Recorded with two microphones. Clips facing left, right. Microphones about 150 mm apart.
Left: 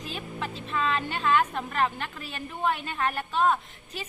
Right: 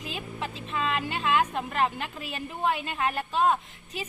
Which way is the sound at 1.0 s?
10° right (ahead or behind).